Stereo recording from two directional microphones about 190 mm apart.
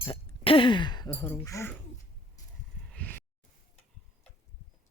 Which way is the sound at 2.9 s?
10° left (ahead or behind).